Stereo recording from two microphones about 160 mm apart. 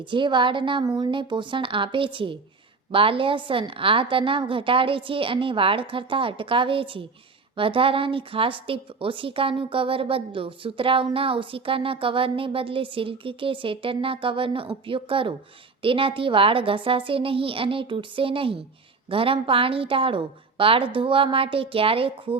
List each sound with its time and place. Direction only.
0.0 s a woman's voice: 30° right (ahead or behind)